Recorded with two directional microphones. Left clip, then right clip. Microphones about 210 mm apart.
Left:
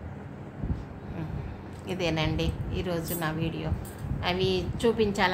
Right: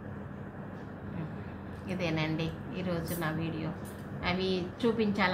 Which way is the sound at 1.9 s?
35° left (ahead or behind).